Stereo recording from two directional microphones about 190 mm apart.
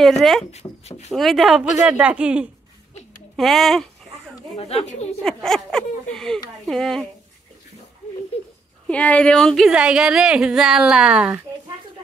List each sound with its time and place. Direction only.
0.2 s speech: centre (ahead or behind)
0.5 s speech: 35° left (ahead or behind)
1.1 s speech: centre (ahead or behind)
4.6 s speech: 30° left (ahead or behind)
5.2 s speech: 5° left (ahead or behind)
8.8 s speech: 5° left (ahead or behind)